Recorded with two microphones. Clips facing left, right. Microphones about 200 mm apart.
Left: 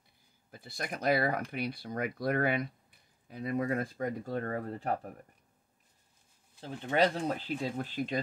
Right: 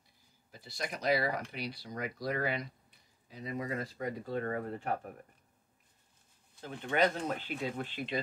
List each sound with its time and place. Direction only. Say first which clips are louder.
0.5 s speech: left 1 dB; 50° left (ahead or behind)
6.6 s speech: left 2 dB; 30° left (ahead or behind)